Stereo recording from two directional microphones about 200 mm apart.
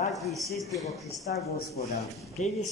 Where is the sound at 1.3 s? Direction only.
50° left (ahead or behind).